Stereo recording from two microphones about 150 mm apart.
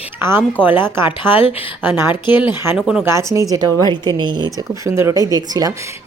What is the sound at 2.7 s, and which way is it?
Speech, centre (ahead or behind).